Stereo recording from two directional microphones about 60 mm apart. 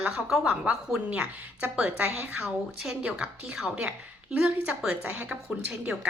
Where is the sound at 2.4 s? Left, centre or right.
Centre.